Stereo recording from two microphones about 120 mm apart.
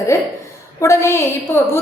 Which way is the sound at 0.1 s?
25° left (ahead or behind).